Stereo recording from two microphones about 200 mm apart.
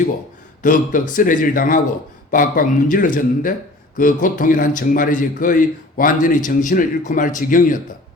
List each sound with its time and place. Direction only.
0.6 s a man's voice: 40° left (ahead or behind)